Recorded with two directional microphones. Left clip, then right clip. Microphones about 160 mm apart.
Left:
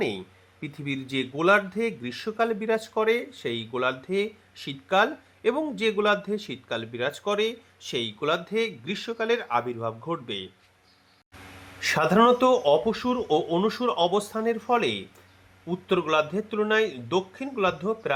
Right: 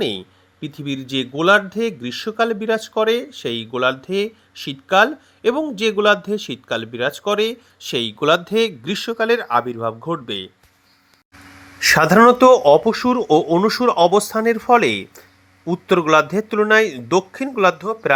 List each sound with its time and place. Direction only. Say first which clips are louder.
0.9 s speech: right 6 dB; 20° right (ahead or behind)
11.8 s speech: right 9 dB; 30° right (ahead or behind)